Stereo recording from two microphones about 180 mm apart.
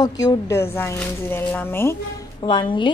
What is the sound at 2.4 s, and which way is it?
Speech, 25° left (ahead or behind).